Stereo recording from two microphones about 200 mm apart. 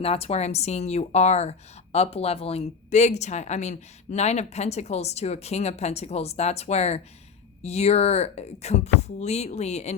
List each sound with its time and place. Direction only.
0.0 s a woman's voice: 30° left (ahead or behind)